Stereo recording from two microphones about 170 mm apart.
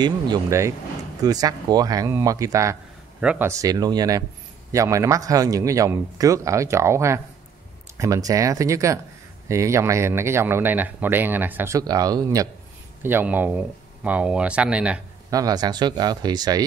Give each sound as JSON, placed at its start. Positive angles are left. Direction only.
{"t": 0.0, "sound": "speech", "side_deg": -20}
{"t": 13.0, "sound": "speech", "side_deg": -10}
{"t": 15.2, "sound": "speech", "side_deg": -20}